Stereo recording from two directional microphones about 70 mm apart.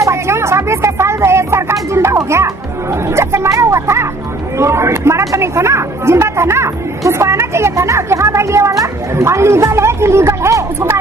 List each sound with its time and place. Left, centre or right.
0.0 s speech: right